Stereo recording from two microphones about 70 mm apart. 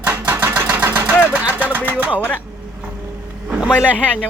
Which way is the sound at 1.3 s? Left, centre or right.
Right.